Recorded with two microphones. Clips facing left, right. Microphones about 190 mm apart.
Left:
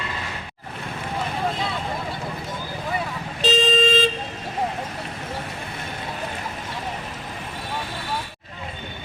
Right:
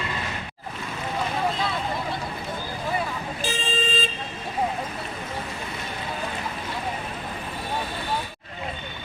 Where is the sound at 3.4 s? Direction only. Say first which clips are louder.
Left 11 dB; 75° left (ahead or behind).